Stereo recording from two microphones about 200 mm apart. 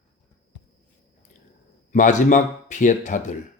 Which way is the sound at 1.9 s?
40° left (ahead or behind).